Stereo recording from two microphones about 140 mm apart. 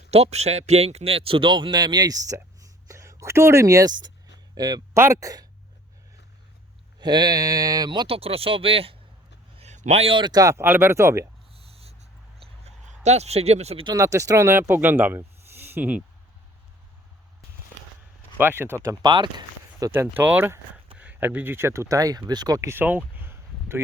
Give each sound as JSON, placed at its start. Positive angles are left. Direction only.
{"t": 0.1, "sound": "a man's voice", "side_deg": -50}
{"t": 7.0, "sound": "speech", "side_deg": -30}
{"t": 9.6, "sound": "speech", "side_deg": -55}
{"t": 11.5, "sound": "a sound", "side_deg": -45}
{"t": 12.6, "sound": "speech", "side_deg": -50}
{"t": 13.8, "sound": "speech", "side_deg": -25}
{"t": 18.3, "sound": "speech", "side_deg": -15}
{"t": 19.9, "sound": "speech", "side_deg": -15}